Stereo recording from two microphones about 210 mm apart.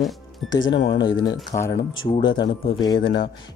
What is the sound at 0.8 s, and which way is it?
Speech, 20° left (ahead or behind).